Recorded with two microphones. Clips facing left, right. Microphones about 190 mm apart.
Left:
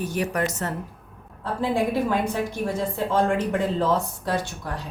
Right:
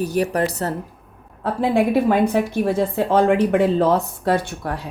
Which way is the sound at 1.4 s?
65° right (ahead or behind).